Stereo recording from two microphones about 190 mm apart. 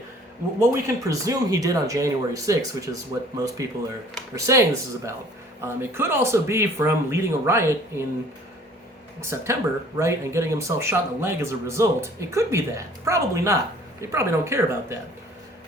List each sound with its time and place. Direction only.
0.6 s speech: 15° right (ahead or behind)
9.2 s speech: 15° right (ahead or behind)